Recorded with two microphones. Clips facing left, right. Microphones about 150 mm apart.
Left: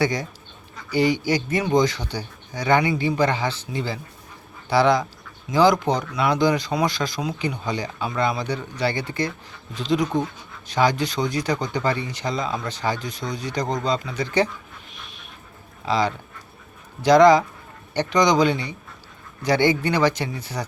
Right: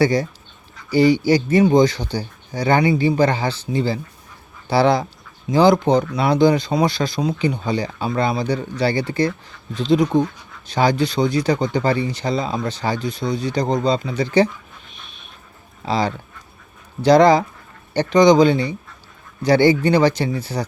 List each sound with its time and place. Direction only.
0.0 s speech: 30° right (ahead or behind)
15.9 s speech: 30° right (ahead or behind)